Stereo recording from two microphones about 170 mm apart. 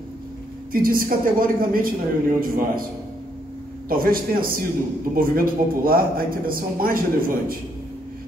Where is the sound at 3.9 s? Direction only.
55° right (ahead or behind).